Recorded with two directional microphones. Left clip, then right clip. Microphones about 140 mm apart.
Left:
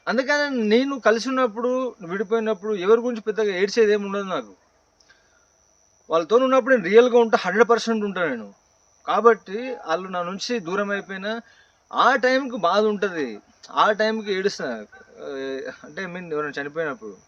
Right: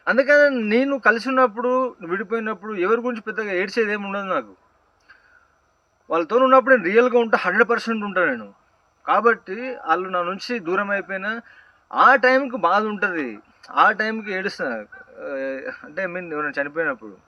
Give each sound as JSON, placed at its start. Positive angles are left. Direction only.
{"t": 0.0, "sound": "a man's voice", "side_deg": 55}
{"t": 6.1, "sound": "a man's voice", "side_deg": 55}
{"t": 11.9, "sound": "a man's voice", "side_deg": 55}